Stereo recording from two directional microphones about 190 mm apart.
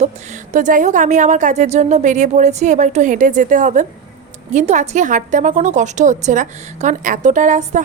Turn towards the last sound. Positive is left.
turn(degrees=-40)  # may be behind; listen again after turning